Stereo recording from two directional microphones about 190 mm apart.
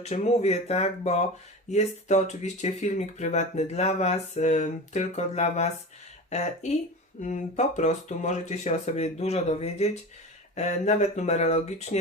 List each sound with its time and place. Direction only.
0.0 s speech: 35° left (ahead or behind)